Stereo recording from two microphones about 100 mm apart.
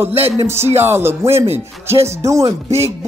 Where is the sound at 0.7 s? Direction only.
25° right (ahead or behind).